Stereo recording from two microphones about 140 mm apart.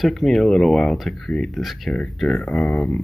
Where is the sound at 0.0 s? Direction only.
Centre (ahead or behind).